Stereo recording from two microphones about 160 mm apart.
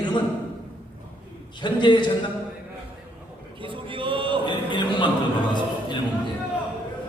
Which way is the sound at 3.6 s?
30° right (ahead or behind).